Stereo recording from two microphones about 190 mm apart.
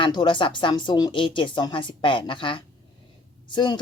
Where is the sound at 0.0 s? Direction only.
25° left (ahead or behind).